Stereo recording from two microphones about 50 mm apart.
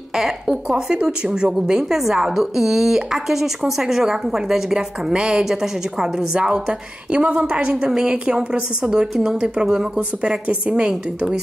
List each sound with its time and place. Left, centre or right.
0.5 s a woman's voice: centre